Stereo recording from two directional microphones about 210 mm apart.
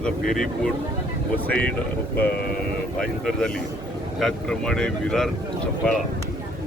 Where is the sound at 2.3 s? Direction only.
50° left (ahead or behind).